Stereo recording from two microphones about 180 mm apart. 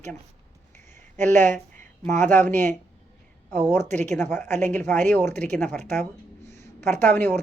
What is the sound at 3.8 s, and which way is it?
Speech, 40° right (ahead or behind).